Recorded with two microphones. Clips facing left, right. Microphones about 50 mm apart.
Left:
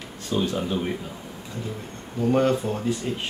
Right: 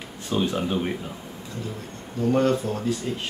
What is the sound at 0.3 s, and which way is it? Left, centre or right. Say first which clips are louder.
Speech: right 1 dB; centre.